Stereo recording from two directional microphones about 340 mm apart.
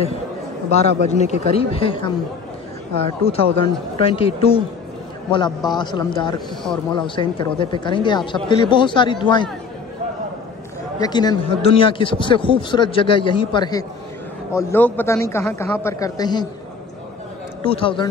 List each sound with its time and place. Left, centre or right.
0.7 s a man's voice: centre
11.0 s a man's voice: centre
17.6 s a man's voice: centre